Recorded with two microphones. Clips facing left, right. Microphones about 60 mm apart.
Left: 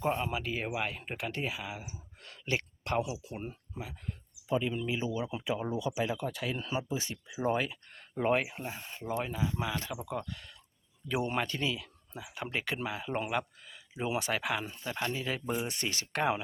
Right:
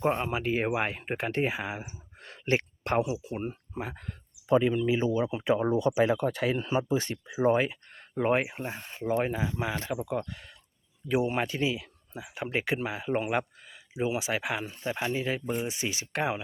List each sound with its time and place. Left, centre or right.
0.0 s speech: right
3.8 s speech: right
4.0 s a sound: right
4.9 s speech: right
7.3 s speech: right
8.4 s speech: right
10.2 s speech: centre
14.8 s speech: right
15.6 s speech: centre